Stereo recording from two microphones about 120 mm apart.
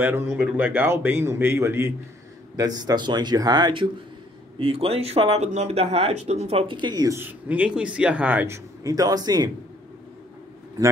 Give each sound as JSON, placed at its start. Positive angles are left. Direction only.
{"t": 0.0, "sound": "speech", "side_deg": -15}
{"t": 0.4, "sound": "speech", "side_deg": -5}
{"t": 0.7, "sound": "a man's voice", "side_deg": -15}
{"t": 2.5, "sound": "speech", "side_deg": -30}
{"t": 4.6, "sound": "speech", "side_deg": -55}
{"t": 7.2, "sound": "speech", "side_deg": -15}
{"t": 8.8, "sound": "speech", "side_deg": -30}